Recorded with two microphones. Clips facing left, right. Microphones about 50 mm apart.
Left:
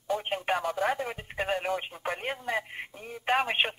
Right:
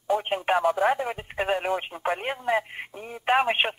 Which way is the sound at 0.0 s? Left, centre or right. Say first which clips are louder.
Right 5 dB; centre.